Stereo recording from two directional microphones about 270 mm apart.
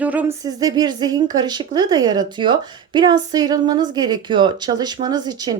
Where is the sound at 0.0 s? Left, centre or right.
Centre.